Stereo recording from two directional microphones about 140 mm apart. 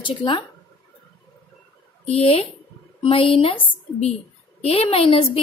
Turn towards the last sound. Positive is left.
turn(degrees=40)  # may be behind; listen again after turning